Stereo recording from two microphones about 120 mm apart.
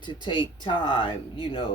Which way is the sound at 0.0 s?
40° left (ahead or behind).